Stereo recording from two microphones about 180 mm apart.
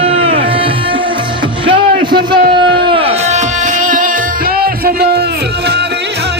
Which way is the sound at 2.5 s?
25° right (ahead or behind).